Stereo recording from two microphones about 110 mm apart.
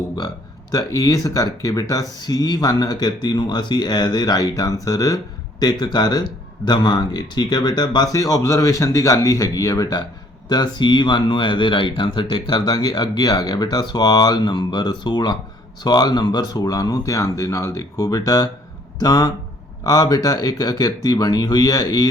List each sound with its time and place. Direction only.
0.7 s speech: 30° left (ahead or behind)
10.5 s speech: 40° left (ahead or behind)